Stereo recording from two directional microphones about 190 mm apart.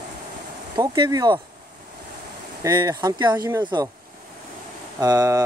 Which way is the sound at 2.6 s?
20° right (ahead or behind).